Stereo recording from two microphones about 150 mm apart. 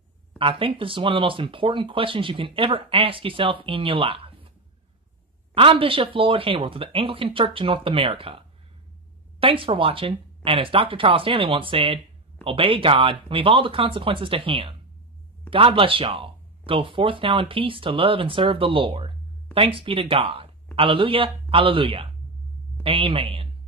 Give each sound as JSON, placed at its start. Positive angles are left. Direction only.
{"t": 0.4, "sound": "speech", "side_deg": -35}
{"t": 5.5, "sound": "speech", "side_deg": -35}